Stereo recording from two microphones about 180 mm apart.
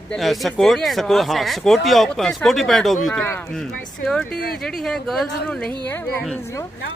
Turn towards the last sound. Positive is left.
turn(degrees=10)  # may be behind; listen again after turning